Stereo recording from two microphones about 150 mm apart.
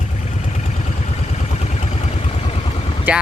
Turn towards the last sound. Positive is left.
turn(degrees=-10)  # may be behind; listen again after turning